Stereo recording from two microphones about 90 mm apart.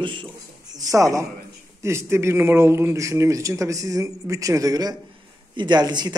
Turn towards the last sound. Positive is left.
turn(degrees=-50)  # may be behind; listen again after turning